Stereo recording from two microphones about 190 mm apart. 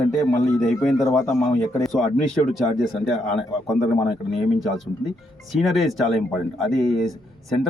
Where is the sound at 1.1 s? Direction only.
15° left (ahead or behind).